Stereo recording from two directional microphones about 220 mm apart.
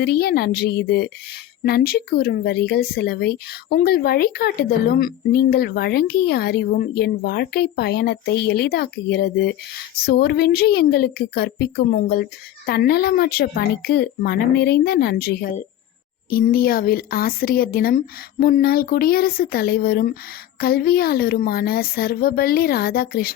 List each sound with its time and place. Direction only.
0.0 s speech: 45° left (ahead or behind)